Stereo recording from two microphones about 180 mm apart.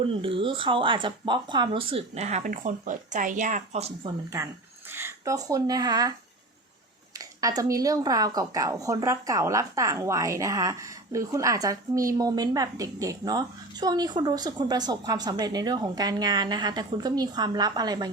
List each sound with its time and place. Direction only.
0.0 s speech: 30° right (ahead or behind)
4.9 s speech: 15° right (ahead or behind)